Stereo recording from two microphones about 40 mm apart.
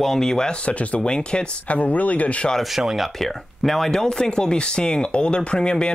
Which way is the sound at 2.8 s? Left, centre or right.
Centre.